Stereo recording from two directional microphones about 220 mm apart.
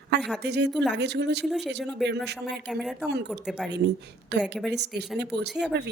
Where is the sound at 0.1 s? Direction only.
50° right (ahead or behind).